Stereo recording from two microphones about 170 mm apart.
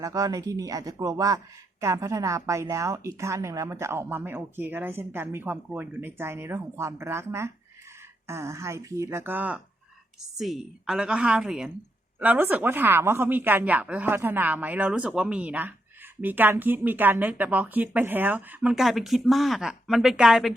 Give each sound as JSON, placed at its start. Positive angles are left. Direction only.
{"t": 0.0, "sound": "a woman's voice", "side_deg": -20}